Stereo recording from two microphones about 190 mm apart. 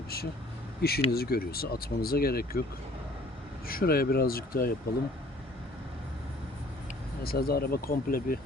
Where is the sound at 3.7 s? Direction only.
50° left (ahead or behind).